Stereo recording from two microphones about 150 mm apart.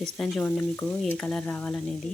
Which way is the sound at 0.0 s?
5° left (ahead or behind).